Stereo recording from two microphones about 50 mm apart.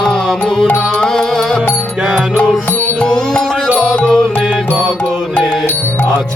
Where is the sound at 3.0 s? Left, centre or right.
Centre.